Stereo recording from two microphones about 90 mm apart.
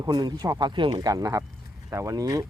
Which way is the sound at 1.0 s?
45° right (ahead or behind).